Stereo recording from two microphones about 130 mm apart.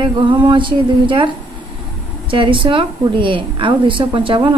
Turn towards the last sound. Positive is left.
turn(degrees=-40)  # may be behind; listen again after turning